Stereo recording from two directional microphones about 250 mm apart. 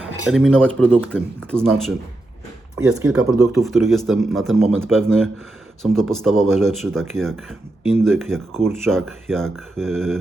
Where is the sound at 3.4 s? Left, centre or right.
Centre.